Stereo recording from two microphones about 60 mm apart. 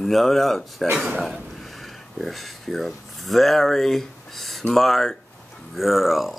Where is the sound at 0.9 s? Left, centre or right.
Right.